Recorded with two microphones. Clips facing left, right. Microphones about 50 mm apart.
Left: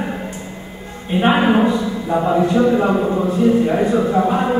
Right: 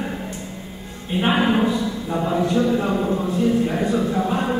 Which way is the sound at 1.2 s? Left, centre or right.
Centre.